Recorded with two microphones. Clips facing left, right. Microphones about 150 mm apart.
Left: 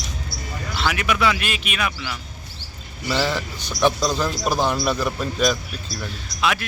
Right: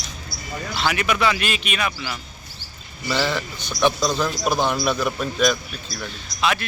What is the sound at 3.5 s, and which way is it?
Speech, 35° left (ahead or behind).